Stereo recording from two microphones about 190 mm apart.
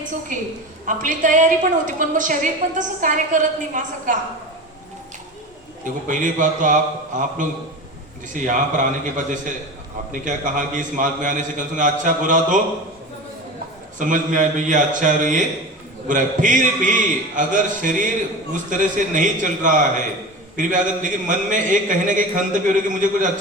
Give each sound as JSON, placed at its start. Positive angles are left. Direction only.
{"t": 0.3, "sound": "a woman's voice", "side_deg": -45}
{"t": 5.8, "sound": "a woman's voice", "side_deg": -40}
{"t": 14.0, "sound": "a woman's voice", "side_deg": -40}